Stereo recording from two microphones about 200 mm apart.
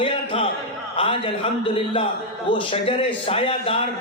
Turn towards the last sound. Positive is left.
turn(degrees=25)  # may be behind; listen again after turning